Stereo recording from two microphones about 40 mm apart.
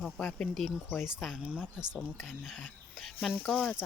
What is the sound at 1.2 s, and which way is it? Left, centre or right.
Speech, centre.